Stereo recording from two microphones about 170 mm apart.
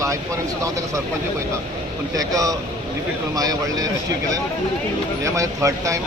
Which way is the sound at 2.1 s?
20° right (ahead or behind).